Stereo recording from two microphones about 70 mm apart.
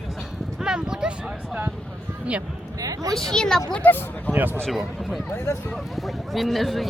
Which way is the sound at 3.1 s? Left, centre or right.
Centre.